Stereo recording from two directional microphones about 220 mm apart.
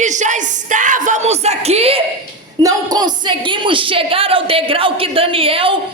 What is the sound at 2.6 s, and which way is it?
Music, 15° right (ahead or behind).